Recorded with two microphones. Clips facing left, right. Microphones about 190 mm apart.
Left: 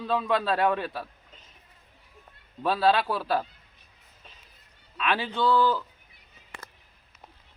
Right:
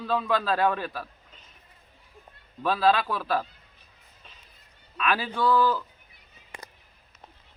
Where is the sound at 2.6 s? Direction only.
30° left (ahead or behind).